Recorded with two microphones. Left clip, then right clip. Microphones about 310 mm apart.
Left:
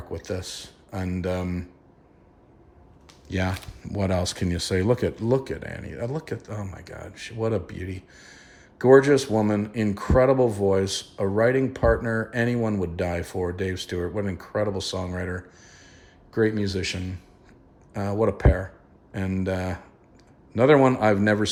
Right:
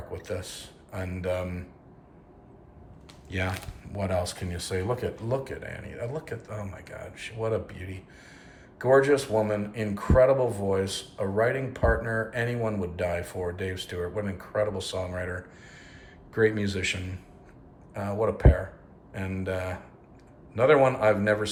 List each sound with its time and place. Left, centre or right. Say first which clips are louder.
0.1 s speech: left 4 dB; centre
3.2 s speech: left 3 dB; centre